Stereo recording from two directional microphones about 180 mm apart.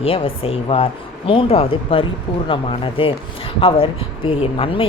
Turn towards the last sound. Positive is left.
turn(degrees=30)  # may be behind; listen again after turning